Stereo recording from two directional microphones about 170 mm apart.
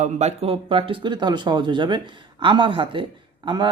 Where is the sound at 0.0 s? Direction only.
40° right (ahead or behind).